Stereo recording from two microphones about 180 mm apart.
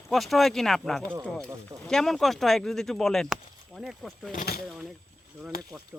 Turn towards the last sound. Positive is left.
turn(degrees=60)  # may be behind; listen again after turning